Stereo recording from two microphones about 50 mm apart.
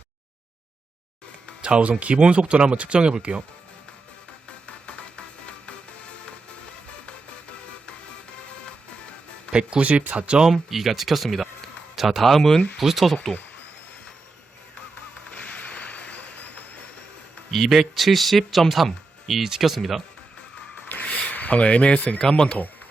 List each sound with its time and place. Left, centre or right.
1.6 s speech: right
4.6 s music: left
9.5 s speech: centre
10.4 s speech: centre
12.8 s speech: centre
15.3 s a sound: left
17.7 s speech: centre
20.9 s a sound: left
22.2 s speech: centre
22.4 s speech: left